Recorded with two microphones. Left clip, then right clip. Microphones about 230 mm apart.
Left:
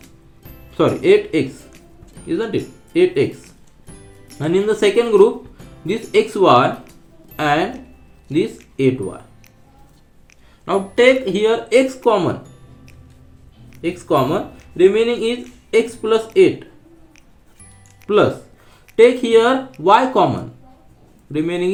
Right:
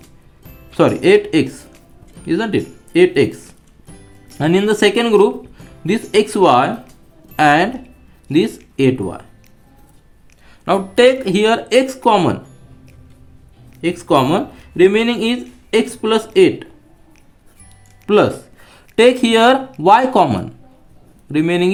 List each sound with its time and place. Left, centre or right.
0.7 s speech: right
3.8 s music: centre
4.4 s speech: right
10.7 s speech: right
13.8 s speech: right
18.1 s speech: right